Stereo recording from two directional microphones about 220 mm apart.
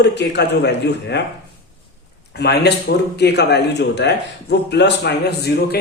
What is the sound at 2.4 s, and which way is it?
Speech, 50° left (ahead or behind).